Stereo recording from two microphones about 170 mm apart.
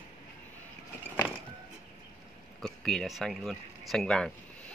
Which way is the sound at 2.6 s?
Centre (ahead or behind).